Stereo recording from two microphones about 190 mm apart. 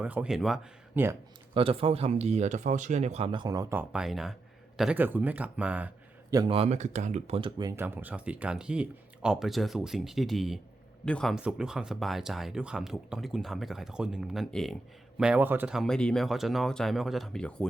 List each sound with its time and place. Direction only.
0.0 s speech: 5° right (ahead or behind)
1.5 s speech: 30° right (ahead or behind); by 5.9 s 5° right (ahead or behind)
6.3 s speech: 25° right (ahead or behind); by 17.7 s 5° left (ahead or behind)